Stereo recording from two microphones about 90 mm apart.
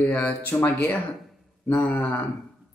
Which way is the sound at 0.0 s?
15° left (ahead or behind).